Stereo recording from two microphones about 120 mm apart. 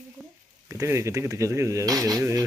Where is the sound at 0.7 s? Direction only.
25° right (ahead or behind).